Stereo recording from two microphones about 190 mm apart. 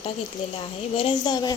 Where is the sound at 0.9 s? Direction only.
30° left (ahead or behind).